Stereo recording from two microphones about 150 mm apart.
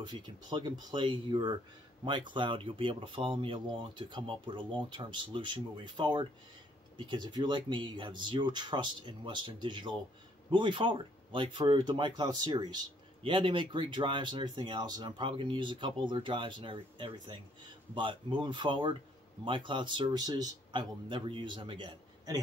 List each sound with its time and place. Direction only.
0.0 s speech: 30° right (ahead or behind)